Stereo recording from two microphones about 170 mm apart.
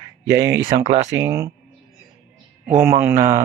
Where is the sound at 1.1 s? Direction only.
20° right (ahead or behind).